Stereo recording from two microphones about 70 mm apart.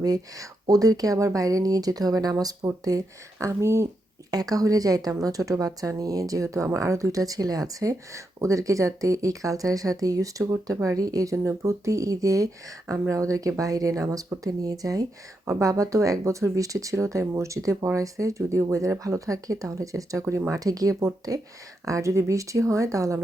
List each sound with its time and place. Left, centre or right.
0.0 s speech: right
3.4 s speech: right
4.3 s speech: right